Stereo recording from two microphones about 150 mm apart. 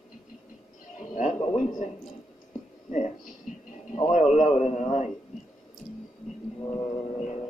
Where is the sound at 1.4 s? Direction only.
45° left (ahead or behind).